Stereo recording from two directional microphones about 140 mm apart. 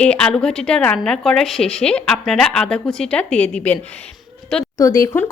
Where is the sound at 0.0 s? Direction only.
5° left (ahead or behind).